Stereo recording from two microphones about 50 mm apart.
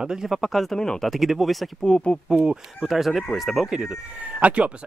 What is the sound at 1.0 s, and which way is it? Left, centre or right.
Speech, centre.